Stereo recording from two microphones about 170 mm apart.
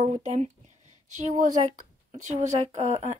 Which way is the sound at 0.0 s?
40° right (ahead or behind).